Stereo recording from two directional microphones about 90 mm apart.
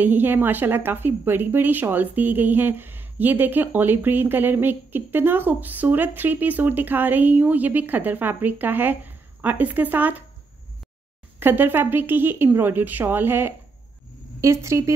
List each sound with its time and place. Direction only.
0.0 s speech: 20° right (ahead or behind)
11.3 s a woman's voice: 20° right (ahead or behind)